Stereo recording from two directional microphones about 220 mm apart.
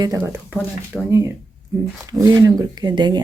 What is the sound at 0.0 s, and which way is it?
Speech, 10° right (ahead or behind).